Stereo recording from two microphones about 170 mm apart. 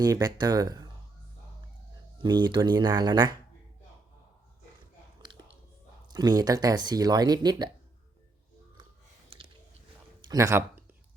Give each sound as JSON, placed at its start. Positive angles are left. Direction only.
{"t": 0.0, "sound": "speech", "side_deg": -20}
{"t": 2.1, "sound": "speech", "side_deg": -25}
{"t": 5.2, "sound": "chewing", "side_deg": -25}
{"t": 6.1, "sound": "speech", "side_deg": -25}
{"t": 9.3, "sound": "a sound", "side_deg": -35}
{"t": 10.2, "sound": "a sound", "side_deg": -20}